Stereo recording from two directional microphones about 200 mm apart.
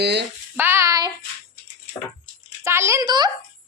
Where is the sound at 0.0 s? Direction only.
55° right (ahead or behind).